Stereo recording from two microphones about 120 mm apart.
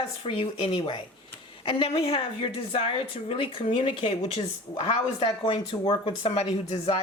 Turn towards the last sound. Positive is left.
turn(degrees=55)  # may be behind; listen again after turning